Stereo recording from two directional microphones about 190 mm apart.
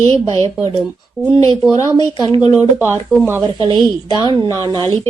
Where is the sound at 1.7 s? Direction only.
20° left (ahead or behind).